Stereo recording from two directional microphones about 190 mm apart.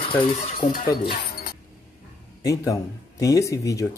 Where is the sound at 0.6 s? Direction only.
50° left (ahead or behind).